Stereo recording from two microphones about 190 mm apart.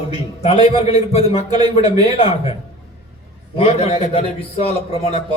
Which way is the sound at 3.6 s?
30° left (ahead or behind).